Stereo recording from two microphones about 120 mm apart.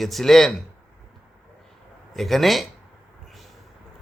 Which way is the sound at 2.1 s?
Centre (ahead or behind).